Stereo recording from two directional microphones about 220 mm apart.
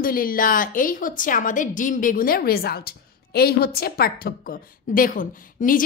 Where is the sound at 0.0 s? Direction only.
40° left (ahead or behind).